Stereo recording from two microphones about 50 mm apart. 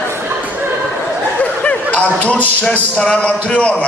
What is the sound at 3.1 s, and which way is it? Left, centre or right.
Speech, left.